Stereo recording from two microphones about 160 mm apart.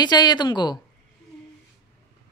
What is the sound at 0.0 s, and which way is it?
Speech, 25° left (ahead or behind).